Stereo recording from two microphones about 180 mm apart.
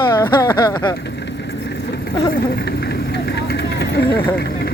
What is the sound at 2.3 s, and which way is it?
Vehicle, 55° left (ahead or behind).